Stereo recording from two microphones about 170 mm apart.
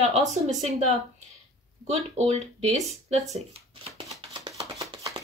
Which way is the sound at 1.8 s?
45° right (ahead or behind).